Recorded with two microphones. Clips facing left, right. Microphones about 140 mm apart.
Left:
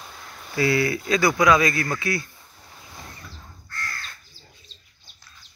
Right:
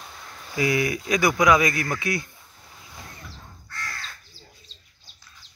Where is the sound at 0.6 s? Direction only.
15° right (ahead or behind).